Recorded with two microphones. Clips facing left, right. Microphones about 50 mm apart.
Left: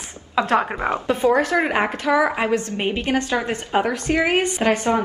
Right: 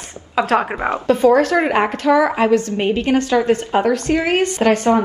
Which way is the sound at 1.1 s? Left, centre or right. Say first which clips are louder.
Right 6 dB; centre.